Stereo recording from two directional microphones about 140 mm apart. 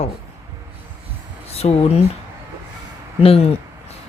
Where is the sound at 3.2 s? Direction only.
45° left (ahead or behind).